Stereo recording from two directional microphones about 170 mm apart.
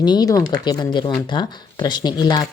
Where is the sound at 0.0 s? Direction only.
25° left (ahead or behind).